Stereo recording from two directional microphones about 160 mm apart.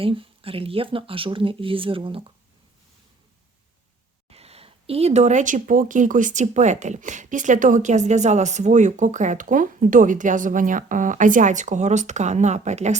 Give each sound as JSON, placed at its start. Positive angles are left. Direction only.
{"t": 0.0, "sound": "speech", "side_deg": -35}
{"t": 4.3, "sound": "speech", "side_deg": -40}